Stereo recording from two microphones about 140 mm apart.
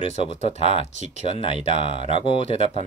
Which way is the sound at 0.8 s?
50° left (ahead or behind).